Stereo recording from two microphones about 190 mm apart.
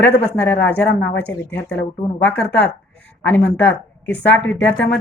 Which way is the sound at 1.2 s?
5° left (ahead or behind).